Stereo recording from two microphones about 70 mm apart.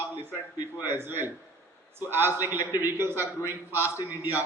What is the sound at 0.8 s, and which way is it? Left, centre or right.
A man's voice, right.